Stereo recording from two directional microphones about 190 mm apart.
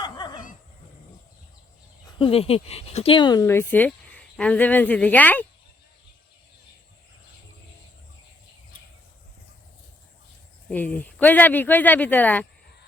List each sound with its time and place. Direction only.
0.0 s dog: 20° left (ahead or behind)
2.1 s speech: 30° left (ahead or behind); by 5.5 s 10° left (ahead or behind)
10.7 s speech: 10° left (ahead or behind)